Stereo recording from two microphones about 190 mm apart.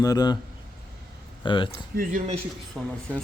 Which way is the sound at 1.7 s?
50° right (ahead or behind).